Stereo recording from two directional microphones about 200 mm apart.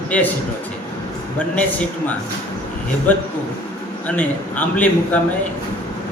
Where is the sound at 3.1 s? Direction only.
10° left (ahead or behind).